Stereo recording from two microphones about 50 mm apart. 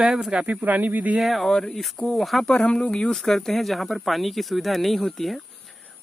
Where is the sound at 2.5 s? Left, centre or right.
Left.